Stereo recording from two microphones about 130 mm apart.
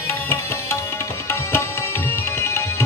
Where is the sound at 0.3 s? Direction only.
20° left (ahead or behind).